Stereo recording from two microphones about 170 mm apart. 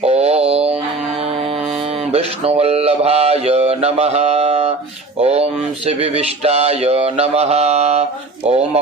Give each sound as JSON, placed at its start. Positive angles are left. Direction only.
{"t": 0.0, "sound": "mantra", "side_deg": -35}
{"t": 2.1, "sound": "speech", "side_deg": -35}